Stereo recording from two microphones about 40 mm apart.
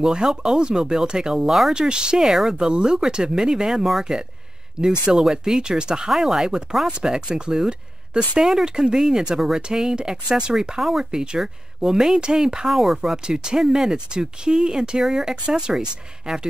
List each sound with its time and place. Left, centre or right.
0.0 s speech: centre
2.2 s speech: centre
2.5 s speech: right
6.0 s speech: centre
7.2 s speech: right
10.8 s speech: centre
12.6 s speech: centre